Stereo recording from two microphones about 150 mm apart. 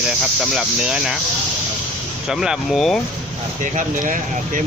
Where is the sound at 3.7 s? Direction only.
60° right (ahead or behind).